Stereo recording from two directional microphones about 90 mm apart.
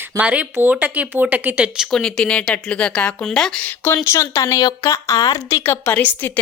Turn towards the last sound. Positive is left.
turn(degrees=20)  # may be behind; listen again after turning